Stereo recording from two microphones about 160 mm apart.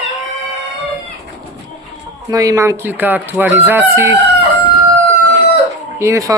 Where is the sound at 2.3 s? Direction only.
20° right (ahead or behind).